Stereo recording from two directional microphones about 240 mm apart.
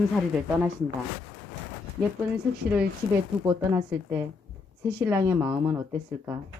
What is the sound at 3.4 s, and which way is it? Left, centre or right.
A woman's voice, centre.